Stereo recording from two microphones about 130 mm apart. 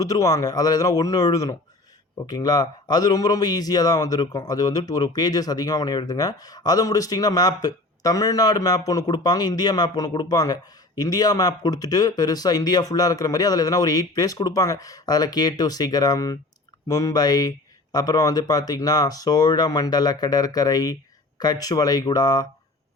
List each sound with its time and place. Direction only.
0.0 s a man's voice: 25° left (ahead or behind)